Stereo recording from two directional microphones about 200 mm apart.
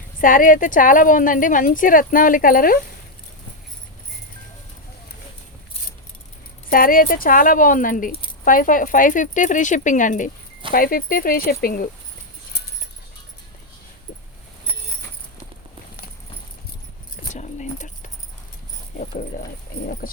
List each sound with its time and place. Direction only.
0.2 s a woman's voice: 45° left (ahead or behind)
6.7 s a woman's voice: 45° left (ahead or behind)
17.3 s keys jangling: 35° left (ahead or behind)
18.9 s cricket: 45° left (ahead or behind)